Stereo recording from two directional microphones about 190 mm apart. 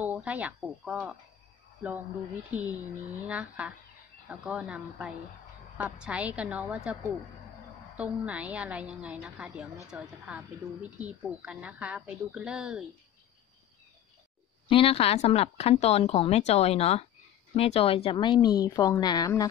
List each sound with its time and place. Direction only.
0.0 s a woman's voice: 10° right (ahead or behind)
2.5 s a woman's voice: 10° right (ahead or behind)
14.7 s a woman's voice: 30° left (ahead or behind)